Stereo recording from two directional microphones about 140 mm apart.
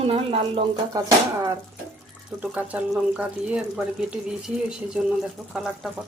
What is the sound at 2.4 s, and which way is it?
Speech, 10° right (ahead or behind).